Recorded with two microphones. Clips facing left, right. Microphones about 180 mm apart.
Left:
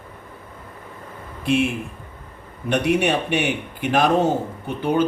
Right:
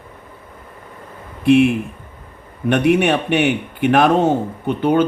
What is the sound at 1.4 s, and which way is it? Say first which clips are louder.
Speech: right 8 dB; 60° right (ahead or behind).